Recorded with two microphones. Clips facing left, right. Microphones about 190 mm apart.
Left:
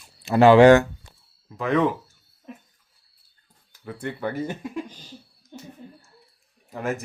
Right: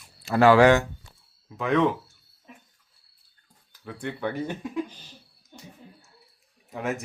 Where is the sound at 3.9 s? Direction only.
5° left (ahead or behind).